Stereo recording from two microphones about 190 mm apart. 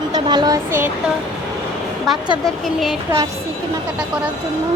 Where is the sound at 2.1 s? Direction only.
Centre (ahead or behind).